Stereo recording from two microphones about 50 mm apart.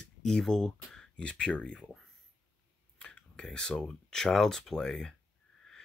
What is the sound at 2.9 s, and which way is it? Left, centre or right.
Speech, left.